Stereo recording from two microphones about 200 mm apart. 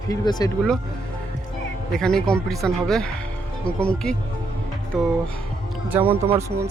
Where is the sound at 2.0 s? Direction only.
5° left (ahead or behind).